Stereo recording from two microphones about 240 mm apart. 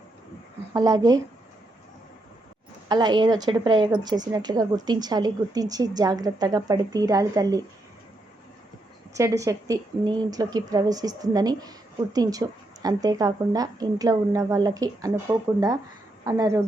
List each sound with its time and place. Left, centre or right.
0.7 s a woman's voice: centre
2.9 s a woman's voice: centre
9.1 s a woman's voice: centre